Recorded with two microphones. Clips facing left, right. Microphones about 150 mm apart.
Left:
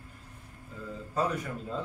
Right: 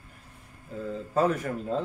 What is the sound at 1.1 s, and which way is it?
Speech, 50° right (ahead or behind).